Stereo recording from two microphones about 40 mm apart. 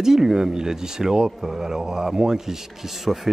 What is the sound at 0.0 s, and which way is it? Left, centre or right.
Speech, centre.